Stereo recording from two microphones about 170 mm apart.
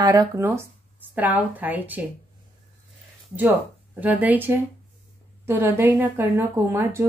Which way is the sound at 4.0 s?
10° right (ahead or behind).